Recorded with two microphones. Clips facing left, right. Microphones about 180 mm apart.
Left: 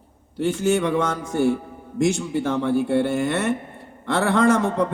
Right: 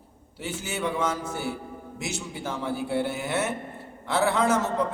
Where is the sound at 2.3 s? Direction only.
60° left (ahead or behind).